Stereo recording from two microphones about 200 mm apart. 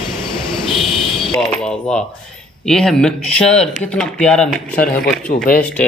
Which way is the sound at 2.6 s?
Centre (ahead or behind).